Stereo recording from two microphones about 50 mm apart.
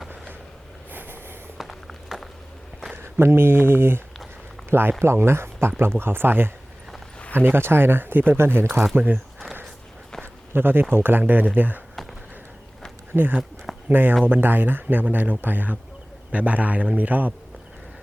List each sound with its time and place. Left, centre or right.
0.9 s snort: right
1.5 s walk: centre
2.9 s speech: right
10.5 s speech: right
13.1 s speech: centre
13.9 s a man's voice: right